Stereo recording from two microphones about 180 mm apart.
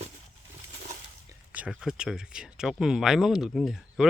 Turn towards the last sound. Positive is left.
turn(degrees=0)  # may be behind; listen again after turning